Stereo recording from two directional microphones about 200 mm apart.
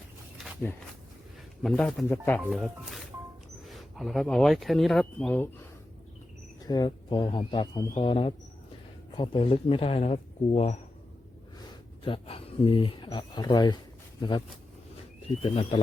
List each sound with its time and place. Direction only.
0.3 s a sound: 5° right (ahead or behind)
1.6 s speech: 5° left (ahead or behind)
2.4 s speech: centre (ahead or behind)
6.6 s speech: 20° left (ahead or behind)
12.0 s speech: 25° left (ahead or behind)